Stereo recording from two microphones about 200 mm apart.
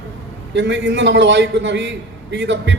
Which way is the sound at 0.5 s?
65° right (ahead or behind).